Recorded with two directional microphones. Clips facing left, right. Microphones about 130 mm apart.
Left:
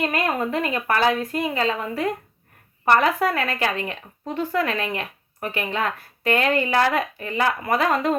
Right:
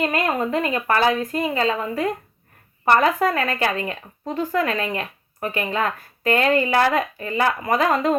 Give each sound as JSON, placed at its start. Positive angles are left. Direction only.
{"t": 0.0, "sound": "speech", "side_deg": -30}
{"t": 3.2, "sound": "speech", "side_deg": -40}